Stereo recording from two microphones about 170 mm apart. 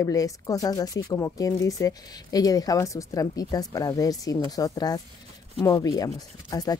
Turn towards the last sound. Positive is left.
turn(degrees=20)  # may be behind; listen again after turning